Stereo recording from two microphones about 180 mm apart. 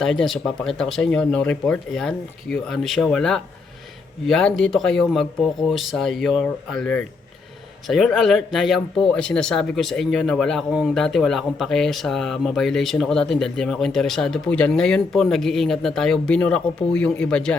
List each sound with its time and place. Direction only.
0.0 s speech: centre (ahead or behind)